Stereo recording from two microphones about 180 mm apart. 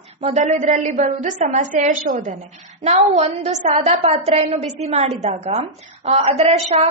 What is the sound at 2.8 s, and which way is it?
A woman's voice, 40° right (ahead or behind).